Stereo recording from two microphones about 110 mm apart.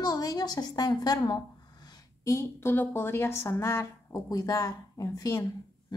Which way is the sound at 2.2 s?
25° left (ahead or behind).